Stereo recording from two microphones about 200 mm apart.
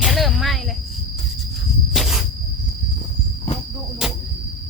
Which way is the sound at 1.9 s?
Centre (ahead or behind).